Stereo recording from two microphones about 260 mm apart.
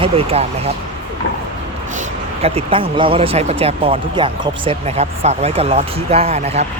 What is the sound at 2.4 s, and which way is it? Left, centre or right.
Speech, right.